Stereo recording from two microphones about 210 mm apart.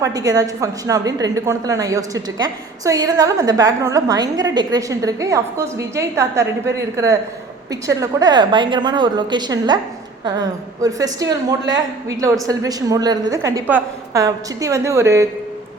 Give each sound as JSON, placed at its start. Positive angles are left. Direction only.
{"t": 0.0, "sound": "a woman's voice", "side_deg": -15}